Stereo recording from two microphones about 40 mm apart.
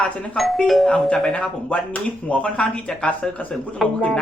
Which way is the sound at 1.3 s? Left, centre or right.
Left.